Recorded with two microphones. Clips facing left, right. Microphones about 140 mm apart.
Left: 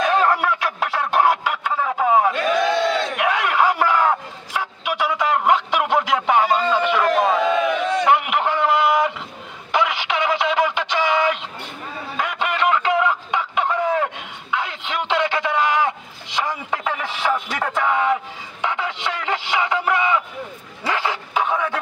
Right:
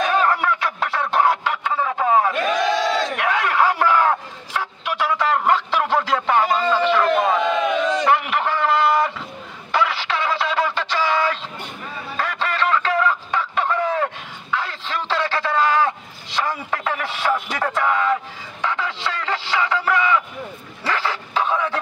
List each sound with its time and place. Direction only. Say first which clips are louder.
0.3 s chicken: left 1 dB; 10° left (ahead or behind)
2.6 s battle cry: even; 55° left (ahead or behind)
3.2 s a sound: left 1 dB; 10° left (ahead or behind)
8.1 s a sound: left 1 dB; 15° left (ahead or behind)
18.6 s music: even; 20° left (ahead or behind)
20.8 s bow-wow: left 1 dB; 20° left (ahead or behind)